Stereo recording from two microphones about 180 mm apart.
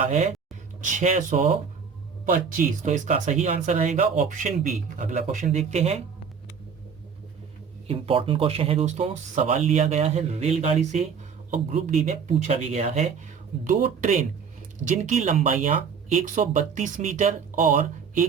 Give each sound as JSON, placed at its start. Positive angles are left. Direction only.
{"t": 0.0, "sound": "speech", "side_deg": -40}
{"t": 7.9, "sound": "speech", "side_deg": -30}